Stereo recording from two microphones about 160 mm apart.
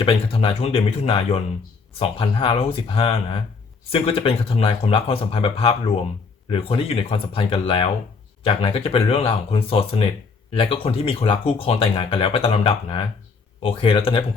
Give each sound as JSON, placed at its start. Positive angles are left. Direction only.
{"t": 0.0, "sound": "speech", "side_deg": 35}